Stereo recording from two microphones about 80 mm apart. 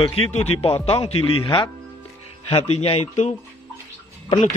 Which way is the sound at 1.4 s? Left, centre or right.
Left.